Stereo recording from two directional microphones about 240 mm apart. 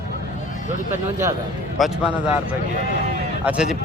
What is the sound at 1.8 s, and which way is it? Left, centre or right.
Speech, centre.